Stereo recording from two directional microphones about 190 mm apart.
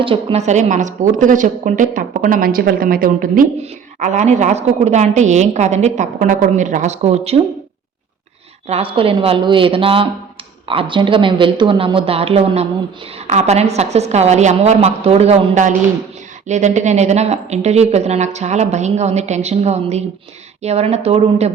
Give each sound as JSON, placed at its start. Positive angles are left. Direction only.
{"t": 0.0, "sound": "a woman's voice", "side_deg": -30}
{"t": 3.6, "sound": "a woman's voice", "side_deg": -35}
{"t": 8.6, "sound": "a woman's voice", "side_deg": -30}